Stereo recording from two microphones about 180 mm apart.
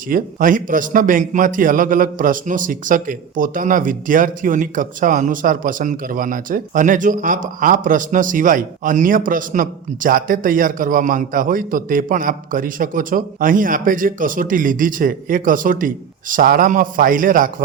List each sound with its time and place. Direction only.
0.1 s a man's voice: 50° right (ahead or behind)